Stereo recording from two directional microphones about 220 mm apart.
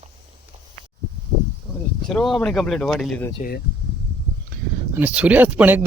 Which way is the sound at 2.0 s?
Centre (ahead or behind).